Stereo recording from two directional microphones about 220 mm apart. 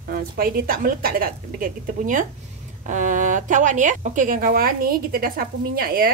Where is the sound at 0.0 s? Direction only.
40° right (ahead or behind).